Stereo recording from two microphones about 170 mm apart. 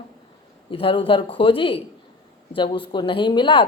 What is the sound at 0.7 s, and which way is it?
A woman's voice, 30° left (ahead or behind).